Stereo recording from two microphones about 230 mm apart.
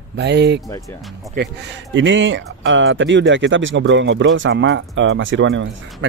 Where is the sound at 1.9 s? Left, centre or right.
Right.